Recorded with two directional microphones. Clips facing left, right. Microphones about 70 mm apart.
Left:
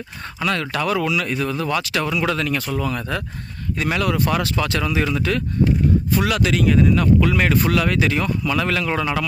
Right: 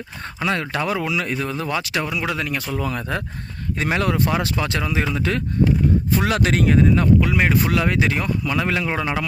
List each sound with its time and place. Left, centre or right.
0.3 s speech: right
7.2 s speech: centre